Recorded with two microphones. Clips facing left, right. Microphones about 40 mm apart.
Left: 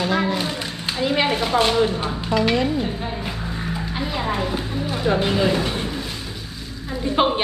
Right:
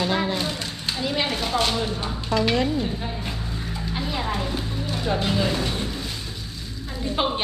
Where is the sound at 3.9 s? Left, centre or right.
Centre.